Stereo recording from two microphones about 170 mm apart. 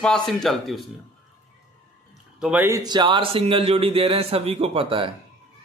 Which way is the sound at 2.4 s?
10° right (ahead or behind).